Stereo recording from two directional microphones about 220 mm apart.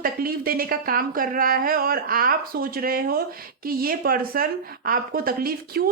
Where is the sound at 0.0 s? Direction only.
40° right (ahead or behind).